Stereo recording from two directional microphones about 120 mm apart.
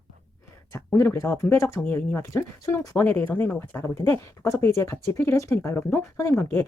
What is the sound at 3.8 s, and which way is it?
Speech, 25° left (ahead or behind).